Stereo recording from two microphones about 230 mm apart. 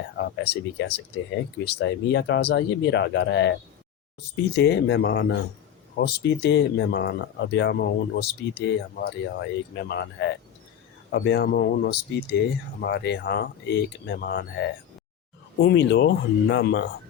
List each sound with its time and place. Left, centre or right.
0.2 s speech: left